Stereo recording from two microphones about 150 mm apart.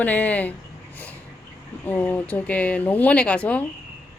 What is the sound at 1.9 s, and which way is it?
Speech, 10° left (ahead or behind).